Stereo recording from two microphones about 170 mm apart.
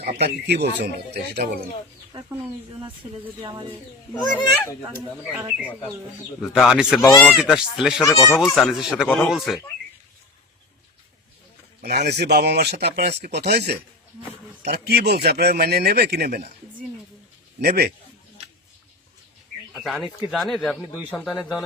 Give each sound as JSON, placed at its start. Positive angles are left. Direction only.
{"t": 0.2, "sound": "speech", "side_deg": -75}
{"t": 3.4, "sound": "speech", "side_deg": -25}
{"t": 4.2, "sound": "speech", "side_deg": 25}
{"t": 5.4, "sound": "speech", "side_deg": -10}
{"t": 6.4, "sound": "speech", "side_deg": 0}
{"t": 11.8, "sound": "speech", "side_deg": -75}
{"t": 17.6, "sound": "speech", "side_deg": -65}
{"t": 19.7, "sound": "speech", "side_deg": 0}